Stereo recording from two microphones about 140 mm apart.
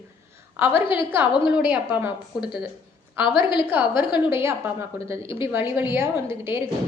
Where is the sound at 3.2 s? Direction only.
35° left (ahead or behind).